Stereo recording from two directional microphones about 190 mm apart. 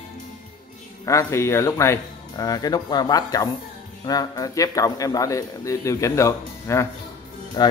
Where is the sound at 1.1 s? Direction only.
15° left (ahead or behind).